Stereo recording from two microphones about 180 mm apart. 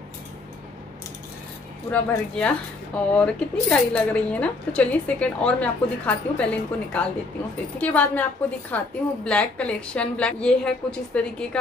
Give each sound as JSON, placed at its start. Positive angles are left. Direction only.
{"t": 1.9, "sound": "speech", "side_deg": 5}